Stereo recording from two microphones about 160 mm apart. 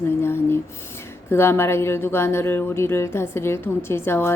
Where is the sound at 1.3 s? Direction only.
15° left (ahead or behind).